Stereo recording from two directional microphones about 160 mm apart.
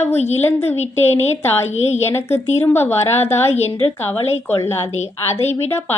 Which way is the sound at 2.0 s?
15° left (ahead or behind).